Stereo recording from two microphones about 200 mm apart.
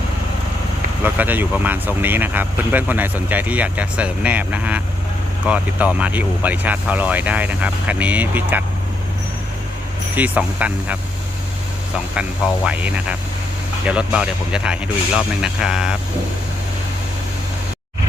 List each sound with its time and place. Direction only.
1.0 s speech: 10° right (ahead or behind)
10.2 s speech: 5° right (ahead or behind)
12.1 s speech: 5° right (ahead or behind)